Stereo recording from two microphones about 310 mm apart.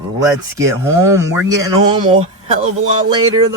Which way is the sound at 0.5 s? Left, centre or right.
Centre.